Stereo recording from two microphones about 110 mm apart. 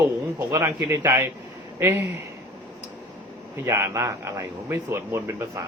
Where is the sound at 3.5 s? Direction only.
25° right (ahead or behind).